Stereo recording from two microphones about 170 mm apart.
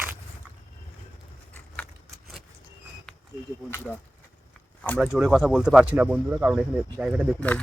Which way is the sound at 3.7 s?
15° left (ahead or behind).